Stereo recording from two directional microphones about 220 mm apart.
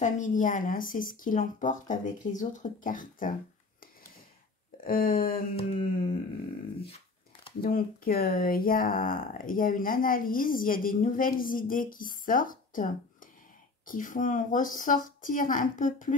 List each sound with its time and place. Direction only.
0.0 s speech: 35° left (ahead or behind)
4.8 s speech: 40° left (ahead or behind)
5.6 s humming: 25° left (ahead or behind)
7.6 s speech: 40° left (ahead or behind)